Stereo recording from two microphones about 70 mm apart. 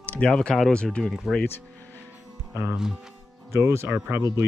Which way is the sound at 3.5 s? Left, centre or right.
Right.